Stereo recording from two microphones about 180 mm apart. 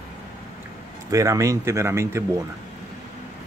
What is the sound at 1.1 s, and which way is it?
Speech, 15° right (ahead or behind).